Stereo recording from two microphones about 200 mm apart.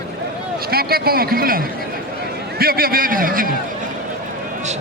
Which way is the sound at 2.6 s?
50° right (ahead or behind).